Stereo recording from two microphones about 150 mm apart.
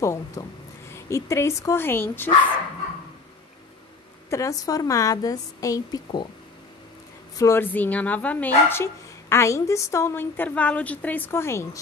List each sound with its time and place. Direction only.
0.0 s a woman's voice: 20° left (ahead or behind)
4.3 s a woman's voice: 20° left (ahead or behind)
7.3 s speech: 20° left (ahead or behind)